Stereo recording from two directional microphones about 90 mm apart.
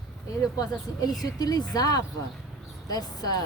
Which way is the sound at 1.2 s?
45° left (ahead or behind).